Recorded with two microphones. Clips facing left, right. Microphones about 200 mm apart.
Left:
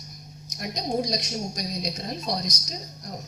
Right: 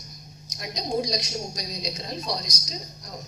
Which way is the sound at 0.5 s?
55° left (ahead or behind).